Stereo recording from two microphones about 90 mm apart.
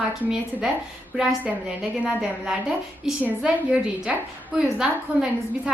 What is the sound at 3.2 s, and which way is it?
A woman's voice, 10° right (ahead or behind).